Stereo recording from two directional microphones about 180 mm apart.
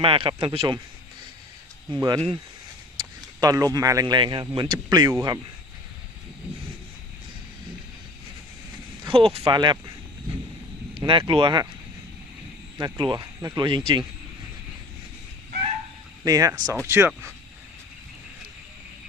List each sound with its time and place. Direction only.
0.0 s speech: 30° right (ahead or behind)
1.9 s speech: 20° right (ahead or behind)
3.4 s speech: 20° right (ahead or behind)
9.0 s speech: 30° right (ahead or behind)
11.0 s speech: 25° right (ahead or behind)
12.8 s speech: 25° right (ahead or behind)
16.2 s speech: 20° right (ahead or behind)